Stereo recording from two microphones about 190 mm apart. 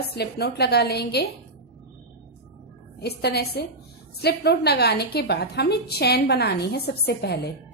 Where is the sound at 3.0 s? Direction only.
60° left (ahead or behind).